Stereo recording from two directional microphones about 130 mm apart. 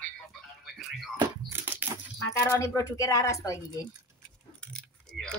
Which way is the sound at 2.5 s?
20° left (ahead or behind).